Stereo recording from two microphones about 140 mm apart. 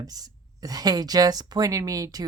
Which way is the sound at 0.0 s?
25° right (ahead or behind).